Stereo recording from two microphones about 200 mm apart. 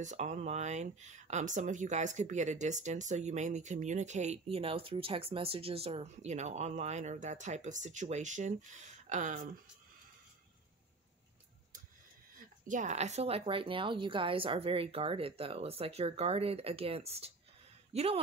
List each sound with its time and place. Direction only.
0.0 s speech: 35° right (ahead or behind)
12.4 s speech: 40° right (ahead or behind)